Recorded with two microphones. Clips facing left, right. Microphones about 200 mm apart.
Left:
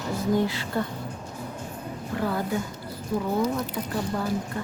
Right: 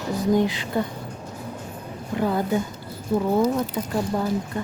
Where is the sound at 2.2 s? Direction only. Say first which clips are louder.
Right 5 dB; 20° right (ahead or behind).